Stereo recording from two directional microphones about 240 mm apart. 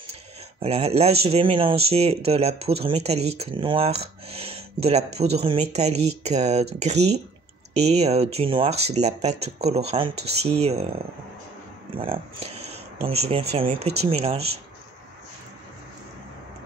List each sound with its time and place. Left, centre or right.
0.6 s speech: right
12.0 s speech: right